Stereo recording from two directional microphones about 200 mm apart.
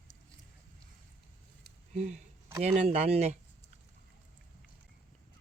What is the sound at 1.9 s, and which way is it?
Speech, 35° right (ahead or behind).